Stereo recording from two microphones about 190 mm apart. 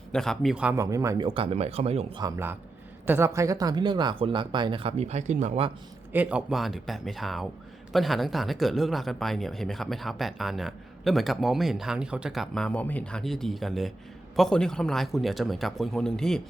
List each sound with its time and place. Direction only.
0.1 s speech: centre (ahead or behind); by 2.2 s 30° right (ahead or behind)
2.2 s speech: 15° right (ahead or behind); by 5.7 s 35° right (ahead or behind)
6.1 s speech: 5° right (ahead or behind)